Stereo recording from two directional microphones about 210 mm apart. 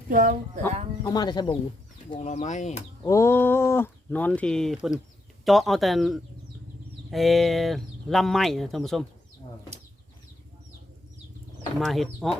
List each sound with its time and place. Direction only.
0.1 s speech: 40° right (ahead or behind)
1.0 s speech: 20° left (ahead or behind)
2.1 s speech: 35° left (ahead or behind)
3.0 s speech: 15° left (ahead or behind)
11.9 s speech: centre (ahead or behind)